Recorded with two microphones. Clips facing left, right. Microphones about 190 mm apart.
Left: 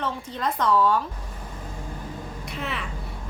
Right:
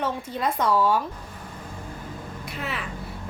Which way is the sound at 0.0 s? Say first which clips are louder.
Right 2 dB; 10° right (ahead or behind).